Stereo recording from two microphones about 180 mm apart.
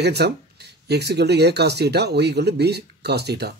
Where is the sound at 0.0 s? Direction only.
65° right (ahead or behind).